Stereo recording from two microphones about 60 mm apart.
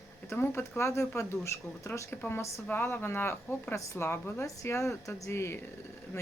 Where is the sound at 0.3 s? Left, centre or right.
Left.